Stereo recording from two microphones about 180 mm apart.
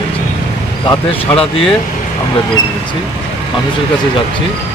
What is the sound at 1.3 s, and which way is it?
Speech, 30° left (ahead or behind).